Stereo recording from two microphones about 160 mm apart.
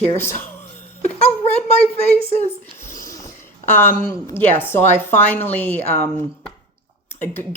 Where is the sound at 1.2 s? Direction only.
40° left (ahead or behind).